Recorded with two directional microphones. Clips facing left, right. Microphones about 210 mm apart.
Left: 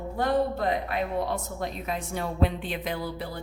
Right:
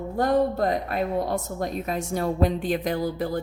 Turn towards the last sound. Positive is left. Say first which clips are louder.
# right 7 dB
turn(degrees=-45)  # may be behind; listen again after turning